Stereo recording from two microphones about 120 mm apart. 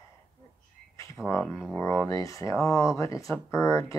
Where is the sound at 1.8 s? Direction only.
20° left (ahead or behind).